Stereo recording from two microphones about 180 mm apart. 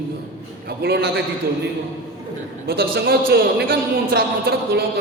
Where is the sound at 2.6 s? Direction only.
60° right (ahead or behind).